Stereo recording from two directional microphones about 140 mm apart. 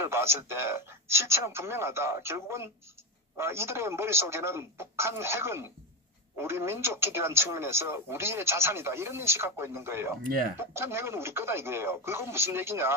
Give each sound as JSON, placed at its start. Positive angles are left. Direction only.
{"t": 0.0, "sound": "a man's voice", "side_deg": -20}